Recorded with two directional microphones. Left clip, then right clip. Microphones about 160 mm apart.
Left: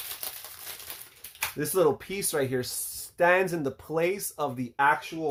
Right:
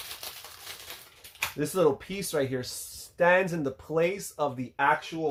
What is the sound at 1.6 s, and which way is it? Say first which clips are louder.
Speech: left 1 dB; 30° left (ahead or behind).